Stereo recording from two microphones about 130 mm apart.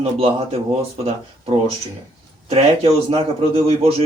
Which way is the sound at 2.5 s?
45° right (ahead or behind).